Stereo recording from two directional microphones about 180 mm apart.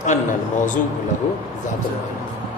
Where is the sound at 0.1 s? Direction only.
40° left (ahead or behind).